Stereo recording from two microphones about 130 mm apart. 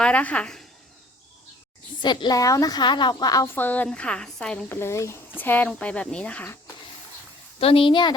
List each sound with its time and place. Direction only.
0.0 s a woman's voice: 10° left (ahead or behind)
2.0 s a woman's voice: 35° left (ahead or behind)
3.4 s a woman's voice: 15° left (ahead or behind)
4.8 s a woman's voice: 20° left (ahead or behind)
7.6 s a woman's voice: 45° left (ahead or behind)